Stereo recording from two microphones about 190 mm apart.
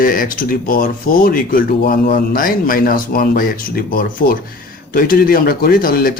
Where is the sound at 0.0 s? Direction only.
50° left (ahead or behind).